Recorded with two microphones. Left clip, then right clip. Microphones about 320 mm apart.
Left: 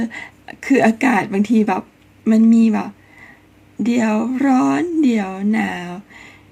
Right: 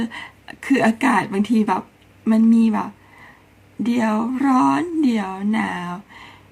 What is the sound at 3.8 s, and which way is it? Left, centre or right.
Speech, centre.